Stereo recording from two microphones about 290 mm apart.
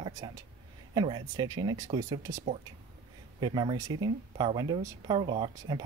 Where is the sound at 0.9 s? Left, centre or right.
Centre.